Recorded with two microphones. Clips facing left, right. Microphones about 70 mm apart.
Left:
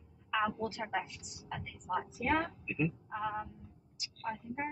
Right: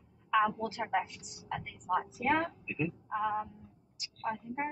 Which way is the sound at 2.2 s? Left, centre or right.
Centre.